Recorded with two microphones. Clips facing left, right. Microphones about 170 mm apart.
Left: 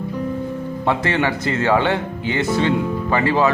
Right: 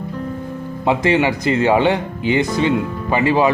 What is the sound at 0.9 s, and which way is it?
Speech, 15° right (ahead or behind).